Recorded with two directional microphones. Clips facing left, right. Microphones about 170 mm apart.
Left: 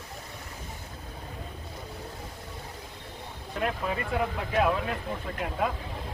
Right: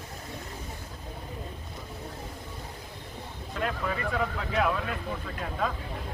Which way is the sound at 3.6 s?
20° left (ahead or behind).